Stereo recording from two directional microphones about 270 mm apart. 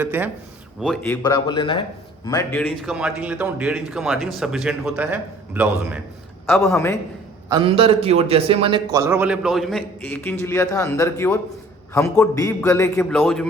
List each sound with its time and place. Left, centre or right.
0.0 s a man's voice: centre
1.0 s a man's voice: centre
6.6 s a man's voice: centre
7.5 s a man's voice: centre